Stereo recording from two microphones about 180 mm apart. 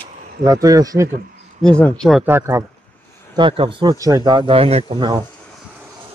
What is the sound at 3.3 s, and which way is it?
Speech, 25° right (ahead or behind).